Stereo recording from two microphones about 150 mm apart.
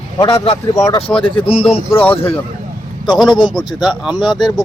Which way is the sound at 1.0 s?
35° left (ahead or behind).